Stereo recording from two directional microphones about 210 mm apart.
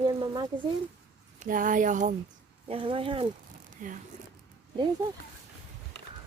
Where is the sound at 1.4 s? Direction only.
40° right (ahead or behind).